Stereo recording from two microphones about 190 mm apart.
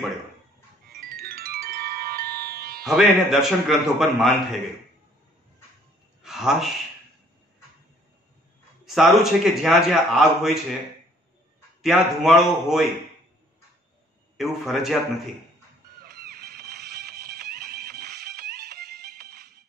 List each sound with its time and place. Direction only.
0.8 s music: 55° right (ahead or behind)
2.9 s a man's voice: centre (ahead or behind)
6.2 s a sound: centre (ahead or behind)
8.8 s a man's voice: centre (ahead or behind)
11.8 s a man's voice: centre (ahead or behind)
14.3 s a man's voice: centre (ahead or behind)
16.0 s music: 55° right (ahead or behind)